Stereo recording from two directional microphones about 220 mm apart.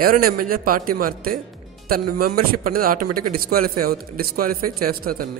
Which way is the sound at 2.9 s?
90° right.